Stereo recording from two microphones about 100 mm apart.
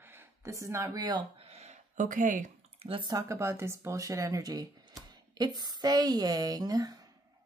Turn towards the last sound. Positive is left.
turn(degrees=-40)  # may be behind; listen again after turning